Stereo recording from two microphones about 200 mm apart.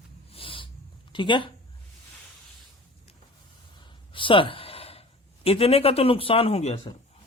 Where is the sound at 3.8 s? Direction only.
25° left (ahead or behind).